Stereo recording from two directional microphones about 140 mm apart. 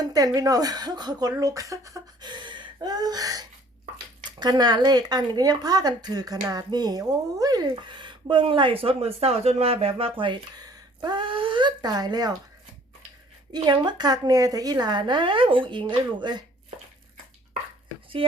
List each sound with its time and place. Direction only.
0.0 s speech: 25° right (ahead or behind)
13.5 s speech: 30° right (ahead or behind)
18.2 s speech: 40° right (ahead or behind)